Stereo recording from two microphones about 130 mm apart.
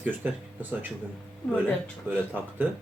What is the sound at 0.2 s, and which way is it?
Speech, 15° right (ahead or behind).